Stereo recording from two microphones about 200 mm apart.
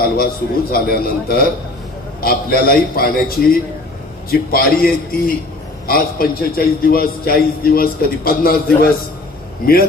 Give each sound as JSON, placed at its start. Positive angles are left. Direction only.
{"t": 0.7, "sound": "a man's voice", "side_deg": 50}